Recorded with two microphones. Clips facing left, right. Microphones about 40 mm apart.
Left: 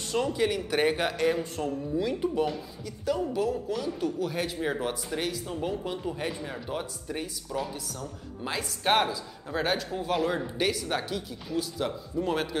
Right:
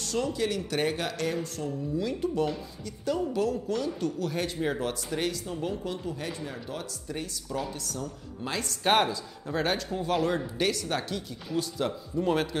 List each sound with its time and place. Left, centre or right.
0.0 s speech: centre
7.4 s speech: centre